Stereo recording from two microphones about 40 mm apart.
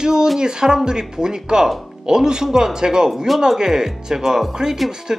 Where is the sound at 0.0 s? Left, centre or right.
Centre.